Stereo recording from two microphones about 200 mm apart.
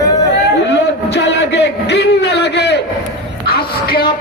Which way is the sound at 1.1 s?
60° left (ahead or behind).